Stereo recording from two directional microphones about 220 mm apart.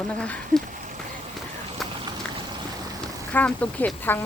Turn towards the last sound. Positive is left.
turn(degrees=10)  # may be behind; listen again after turning